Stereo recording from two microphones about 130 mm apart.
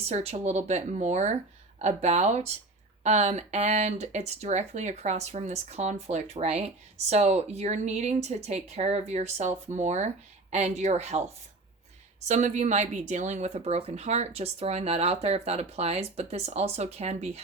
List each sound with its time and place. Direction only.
0.1 s speech: 55° right (ahead or behind)
12.3 s speech: 60° right (ahead or behind)